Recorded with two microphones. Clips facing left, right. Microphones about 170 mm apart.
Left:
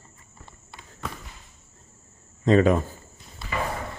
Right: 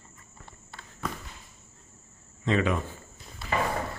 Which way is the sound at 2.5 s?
40° left (ahead or behind).